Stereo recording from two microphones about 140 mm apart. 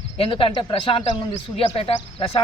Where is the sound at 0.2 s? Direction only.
40° left (ahead or behind).